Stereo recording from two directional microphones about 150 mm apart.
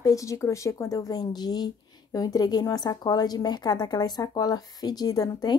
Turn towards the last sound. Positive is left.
turn(degrees=25)  # may be behind; listen again after turning